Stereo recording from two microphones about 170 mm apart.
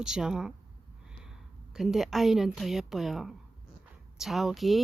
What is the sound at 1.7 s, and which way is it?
A woman's voice, centre (ahead or behind).